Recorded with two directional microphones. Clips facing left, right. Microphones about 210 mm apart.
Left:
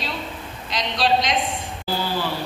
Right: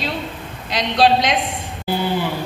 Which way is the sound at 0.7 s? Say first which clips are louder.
Right 5 dB; 65° right (ahead or behind).